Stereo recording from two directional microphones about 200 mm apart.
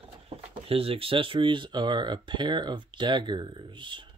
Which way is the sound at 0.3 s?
30° right (ahead or behind).